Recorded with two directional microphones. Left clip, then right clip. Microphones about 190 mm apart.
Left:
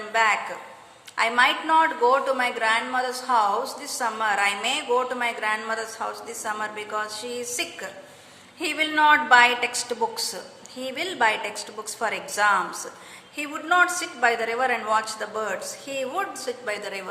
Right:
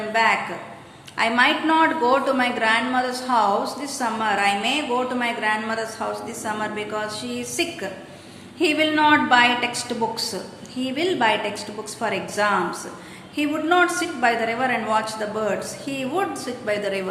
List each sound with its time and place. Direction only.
0.1 s a man's voice: 25° left (ahead or behind)